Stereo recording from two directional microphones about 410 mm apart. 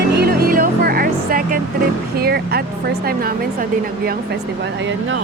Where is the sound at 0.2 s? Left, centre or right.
Right.